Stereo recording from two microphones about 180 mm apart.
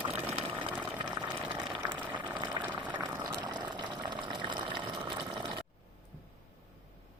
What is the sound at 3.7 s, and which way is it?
Water, 25° right (ahead or behind).